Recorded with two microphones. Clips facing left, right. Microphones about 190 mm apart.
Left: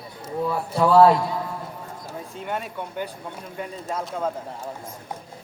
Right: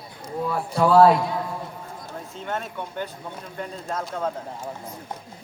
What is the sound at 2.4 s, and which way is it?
Speech, 10° left (ahead or behind).